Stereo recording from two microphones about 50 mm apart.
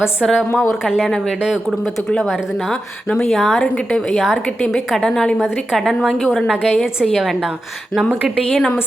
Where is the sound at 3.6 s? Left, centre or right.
Left.